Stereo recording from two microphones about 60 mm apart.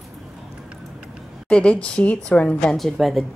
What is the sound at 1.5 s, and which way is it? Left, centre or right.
A woman's voice, centre.